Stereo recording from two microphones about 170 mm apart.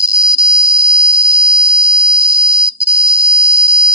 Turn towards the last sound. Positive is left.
turn(degrees=-65)  # may be behind; listen again after turning